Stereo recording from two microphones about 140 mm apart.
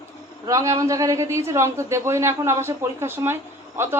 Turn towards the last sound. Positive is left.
turn(degrees=-15)  # may be behind; listen again after turning